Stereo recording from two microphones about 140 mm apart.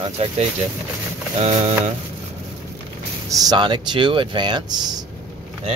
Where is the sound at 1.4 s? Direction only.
55° right (ahead or behind).